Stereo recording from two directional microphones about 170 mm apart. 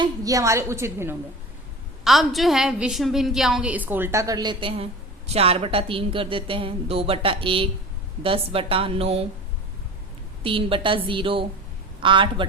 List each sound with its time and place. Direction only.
0.0 s a woman's voice: 20° right (ahead or behind)
2.0 s a woman's voice: centre (ahead or behind); by 9.2 s 35° right (ahead or behind)
10.4 s a woman's voice: 30° right (ahead or behind)